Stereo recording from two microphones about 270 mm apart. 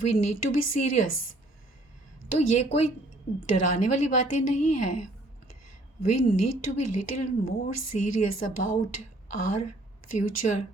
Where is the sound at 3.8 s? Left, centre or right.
Left.